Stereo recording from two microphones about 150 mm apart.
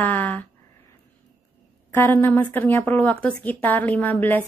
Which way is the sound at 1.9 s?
15° left (ahead or behind).